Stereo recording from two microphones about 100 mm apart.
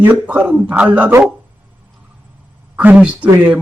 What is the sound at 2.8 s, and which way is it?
Speech, 15° right (ahead or behind).